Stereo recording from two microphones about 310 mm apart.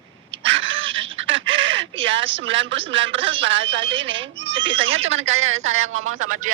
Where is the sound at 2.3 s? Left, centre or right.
Right.